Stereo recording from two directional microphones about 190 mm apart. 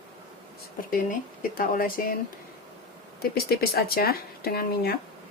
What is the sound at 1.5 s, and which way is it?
Speech, 50° left (ahead or behind).